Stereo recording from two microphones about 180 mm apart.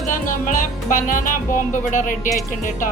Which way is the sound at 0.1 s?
50° left (ahead or behind).